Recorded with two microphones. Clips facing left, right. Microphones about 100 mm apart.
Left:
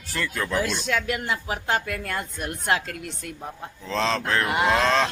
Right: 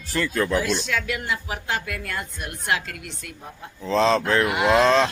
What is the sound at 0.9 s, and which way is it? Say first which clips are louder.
Speech: left 1 dB; 40° left (ahead or behind).